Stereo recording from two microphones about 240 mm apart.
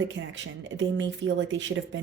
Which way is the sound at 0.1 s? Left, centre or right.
Right.